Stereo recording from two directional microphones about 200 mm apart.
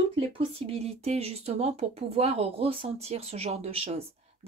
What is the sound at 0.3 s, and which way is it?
Speech, 25° right (ahead or behind).